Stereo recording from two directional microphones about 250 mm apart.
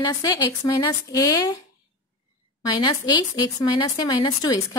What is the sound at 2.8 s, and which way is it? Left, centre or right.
A woman's voice, centre.